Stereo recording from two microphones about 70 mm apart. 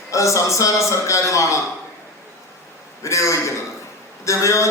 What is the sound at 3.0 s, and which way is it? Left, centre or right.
A man's voice, left.